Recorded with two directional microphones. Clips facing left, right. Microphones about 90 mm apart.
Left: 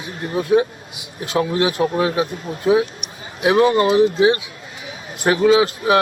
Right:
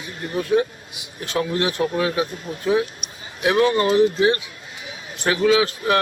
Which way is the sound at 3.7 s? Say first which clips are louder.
Left 2 dB; 25° left (ahead or behind).